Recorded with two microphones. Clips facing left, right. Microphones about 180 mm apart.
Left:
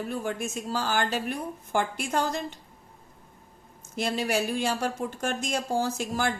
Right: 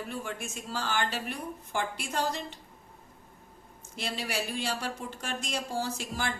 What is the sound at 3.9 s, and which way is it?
A woman's voice, 45° left (ahead or behind).